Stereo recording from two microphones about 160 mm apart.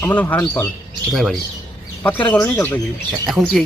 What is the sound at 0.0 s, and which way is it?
Speech, 10° left (ahead or behind).